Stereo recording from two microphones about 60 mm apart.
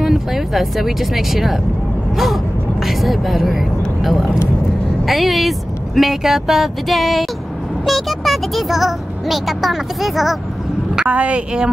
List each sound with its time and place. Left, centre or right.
0.0 s speech: centre
2.8 s speech: centre
11.1 s a woman's voice: right